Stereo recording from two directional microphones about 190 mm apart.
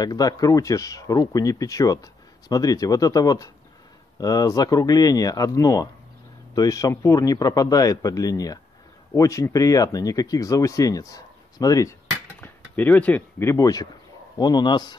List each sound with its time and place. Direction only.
0.0 s speech: 20° left (ahead or behind)
12.4 s speech: 10° left (ahead or behind)